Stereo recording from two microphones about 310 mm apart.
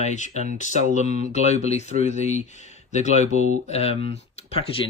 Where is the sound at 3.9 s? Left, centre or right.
Right.